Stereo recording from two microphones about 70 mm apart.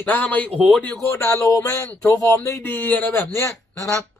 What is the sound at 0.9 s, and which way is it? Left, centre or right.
A man's voice, left.